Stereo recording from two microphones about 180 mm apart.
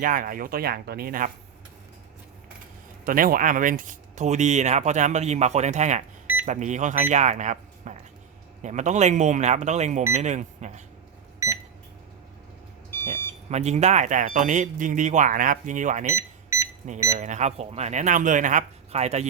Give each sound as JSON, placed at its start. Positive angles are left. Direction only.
{"t": 0.0, "sound": "speech", "side_deg": -50}
{"t": 3.0, "sound": "speech", "side_deg": -50}
{"t": 11.4, "sound": "microwave oven", "side_deg": -15}
{"t": 13.5, "sound": "speech", "side_deg": -40}
{"t": 16.1, "sound": "cash register", "side_deg": -15}
{"t": 16.8, "sound": "speech", "side_deg": -40}